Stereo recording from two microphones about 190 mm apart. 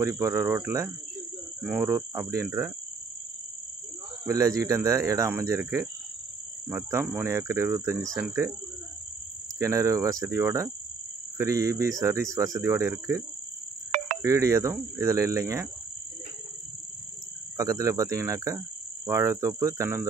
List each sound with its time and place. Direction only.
0.0 s speech: 15° right (ahead or behind)
4.3 s speech: 20° right (ahead or behind)
9.6 s speech: 15° right (ahead or behind)
14.2 s speech: 15° right (ahead or behind)
17.6 s speech: 15° right (ahead or behind)